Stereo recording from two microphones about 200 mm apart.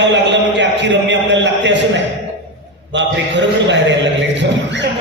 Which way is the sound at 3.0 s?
65° right (ahead or behind).